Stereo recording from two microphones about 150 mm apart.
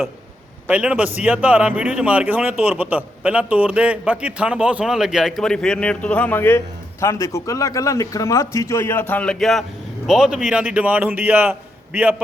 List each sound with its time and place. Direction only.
0.7 s a man's voice: 10° right (ahead or behind)